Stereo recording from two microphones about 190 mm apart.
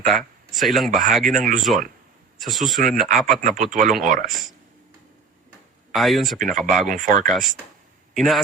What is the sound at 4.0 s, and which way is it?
Speech, 45° right (ahead or behind).